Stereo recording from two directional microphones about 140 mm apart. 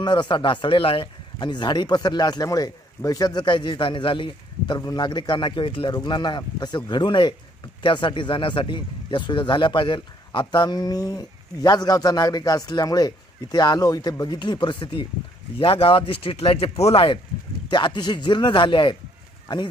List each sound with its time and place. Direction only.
0.0 s speech: 35° left (ahead or behind)